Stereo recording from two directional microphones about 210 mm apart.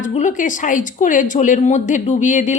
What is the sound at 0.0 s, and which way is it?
A woman's voice, 35° left (ahead or behind).